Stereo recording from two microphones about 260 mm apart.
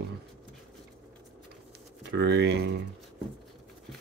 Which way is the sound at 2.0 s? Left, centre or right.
Right.